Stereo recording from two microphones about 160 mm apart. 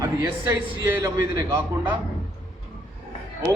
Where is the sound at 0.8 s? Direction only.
20° right (ahead or behind).